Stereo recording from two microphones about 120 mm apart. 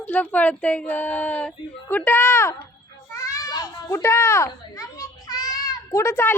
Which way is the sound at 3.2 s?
30° left (ahead or behind).